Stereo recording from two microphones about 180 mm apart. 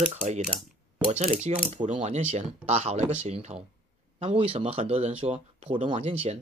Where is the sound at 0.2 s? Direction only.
40° right (ahead or behind).